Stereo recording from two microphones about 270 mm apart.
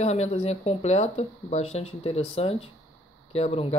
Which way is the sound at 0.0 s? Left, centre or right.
Left.